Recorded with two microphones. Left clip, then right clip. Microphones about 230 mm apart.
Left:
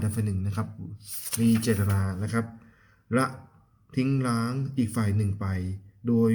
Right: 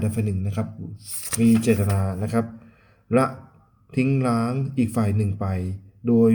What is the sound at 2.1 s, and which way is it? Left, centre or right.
Speech, left.